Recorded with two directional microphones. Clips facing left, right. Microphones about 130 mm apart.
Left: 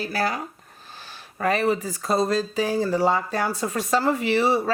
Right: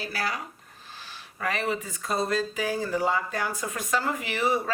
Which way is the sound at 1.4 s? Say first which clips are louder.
Left 7 dB; 35° left (ahead or behind).